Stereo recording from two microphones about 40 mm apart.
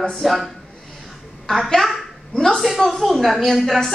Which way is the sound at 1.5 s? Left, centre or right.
Centre.